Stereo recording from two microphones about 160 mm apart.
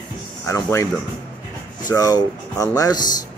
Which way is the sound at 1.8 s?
25° left (ahead or behind).